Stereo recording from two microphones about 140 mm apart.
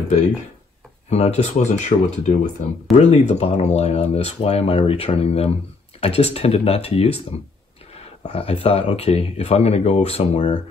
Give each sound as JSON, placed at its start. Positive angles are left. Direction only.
{"t": 1.1, "sound": "speech", "side_deg": 50}